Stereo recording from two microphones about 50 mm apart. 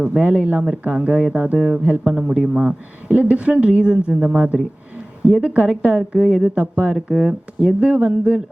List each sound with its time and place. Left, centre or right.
0.0 s a woman's voice: right
1.5 s speech: centre
3.1 s a woman's voice: right
6.9 s speech: centre
7.8 s a woman's voice: right